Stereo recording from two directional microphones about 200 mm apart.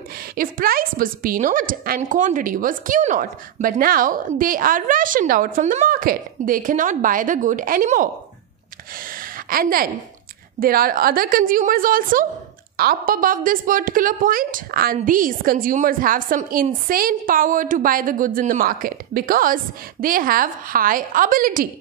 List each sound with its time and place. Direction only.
0.4 s a woman's voice: 45° right (ahead or behind)
9.1 s a sound: 45° right (ahead or behind)
10.6 s a woman's voice: 45° right (ahead or behind)